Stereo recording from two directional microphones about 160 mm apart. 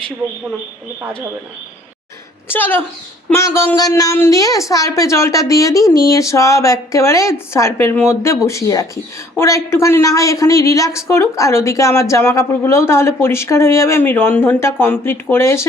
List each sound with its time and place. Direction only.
2.5 s a woman's voice: 10° left (ahead or behind)